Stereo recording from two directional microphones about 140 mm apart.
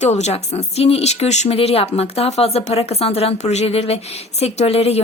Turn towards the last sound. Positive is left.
turn(degrees=45)  # may be behind; listen again after turning